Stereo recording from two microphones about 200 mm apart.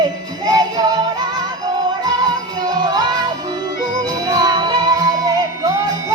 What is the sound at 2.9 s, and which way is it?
Music, 20° right (ahead or behind).